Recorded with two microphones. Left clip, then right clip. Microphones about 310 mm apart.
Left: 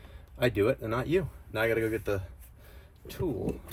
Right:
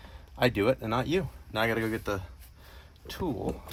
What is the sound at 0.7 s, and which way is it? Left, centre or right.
Speech, centre.